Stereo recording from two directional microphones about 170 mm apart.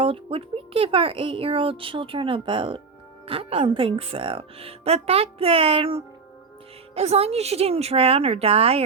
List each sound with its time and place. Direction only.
0.0 s speech: 35° right (ahead or behind)